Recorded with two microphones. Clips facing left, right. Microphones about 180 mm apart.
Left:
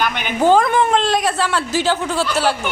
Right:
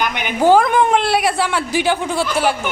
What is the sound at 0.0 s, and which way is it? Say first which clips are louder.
A woman's voice: right 1 dB; 15° right (ahead or behind).